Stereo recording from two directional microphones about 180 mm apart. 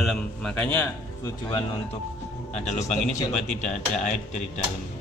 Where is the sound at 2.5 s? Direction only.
40° left (ahead or behind).